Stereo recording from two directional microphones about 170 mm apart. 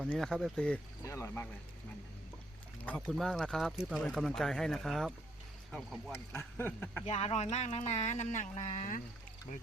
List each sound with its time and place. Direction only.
0.1 s speech: centre (ahead or behind)
1.0 s speech: 15° left (ahead or behind)
3.1 s speech: centre (ahead or behind)
6.1 s speech: 15° left (ahead or behind)
7.0 s speech: 40° left (ahead or behind)